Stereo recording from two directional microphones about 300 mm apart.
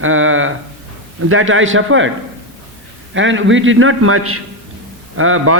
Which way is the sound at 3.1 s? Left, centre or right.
Right.